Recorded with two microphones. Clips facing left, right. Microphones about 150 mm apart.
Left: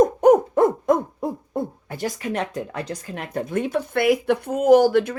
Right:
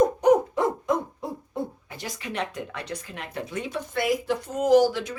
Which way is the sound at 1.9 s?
50° left (ahead or behind).